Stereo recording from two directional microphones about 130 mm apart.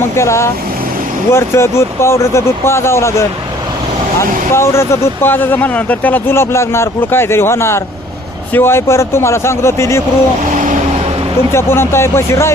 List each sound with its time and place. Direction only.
0.2 s speech: 20° left (ahead or behind)
11.5 s speech: 20° left (ahead or behind)